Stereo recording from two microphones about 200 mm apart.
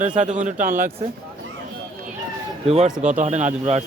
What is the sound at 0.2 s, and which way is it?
Speech, 40° right (ahead or behind).